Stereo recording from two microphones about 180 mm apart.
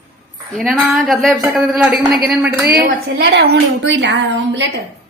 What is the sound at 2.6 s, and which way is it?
A woman's voice, 60° right (ahead or behind).